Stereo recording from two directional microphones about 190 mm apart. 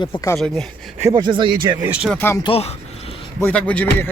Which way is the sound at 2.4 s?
30° left (ahead or behind).